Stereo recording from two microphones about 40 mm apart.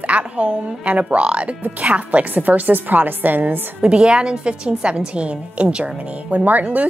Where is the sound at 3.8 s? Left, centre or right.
Right.